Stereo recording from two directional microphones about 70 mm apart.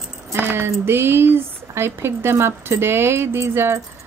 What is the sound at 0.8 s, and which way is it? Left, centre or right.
A woman's voice, right.